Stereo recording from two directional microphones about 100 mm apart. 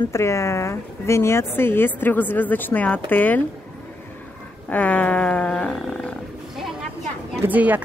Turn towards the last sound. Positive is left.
turn(degrees=-15)  # may be behind; listen again after turning